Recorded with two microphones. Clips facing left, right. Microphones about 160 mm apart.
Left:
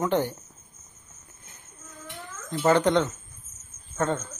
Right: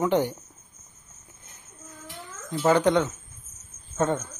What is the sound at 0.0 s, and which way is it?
Speech, 15° right (ahead or behind).